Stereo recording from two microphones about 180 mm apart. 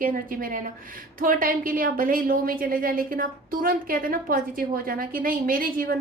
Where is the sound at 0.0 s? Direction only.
50° right (ahead or behind).